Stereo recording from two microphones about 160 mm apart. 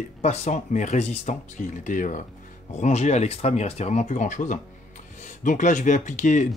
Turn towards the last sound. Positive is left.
turn(degrees=50)  # may be behind; listen again after turning